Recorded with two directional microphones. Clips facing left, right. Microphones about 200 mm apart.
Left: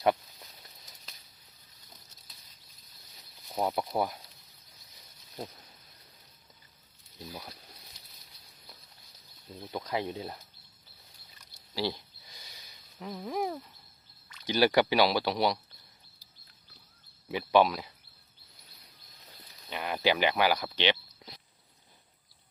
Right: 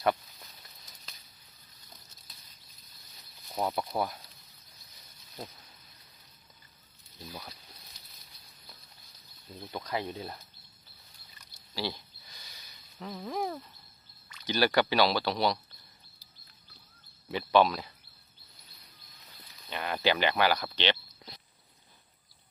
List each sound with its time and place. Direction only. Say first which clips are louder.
3.5 s speech: left 1 dB; 15° left (ahead or behind)
9.6 s a sound: left 1 dB; 10° left (ahead or behind)
11.7 s a sound: left 3 dB; 20° left (ahead or behind)
13.0 s speech: left 1 dB; 10° left (ahead or behind)
17.2 s speech: even; 10° left (ahead or behind)
19.7 s cricket: even; 10° left (ahead or behind)